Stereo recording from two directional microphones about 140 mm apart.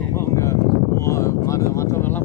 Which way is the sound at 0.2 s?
20° left (ahead or behind).